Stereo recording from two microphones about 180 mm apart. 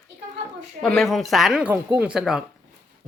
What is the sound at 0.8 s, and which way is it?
Speech, 5° left (ahead or behind).